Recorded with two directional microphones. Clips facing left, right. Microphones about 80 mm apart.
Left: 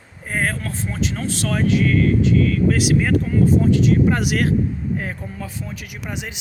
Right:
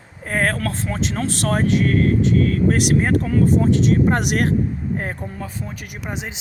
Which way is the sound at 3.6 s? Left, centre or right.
Right.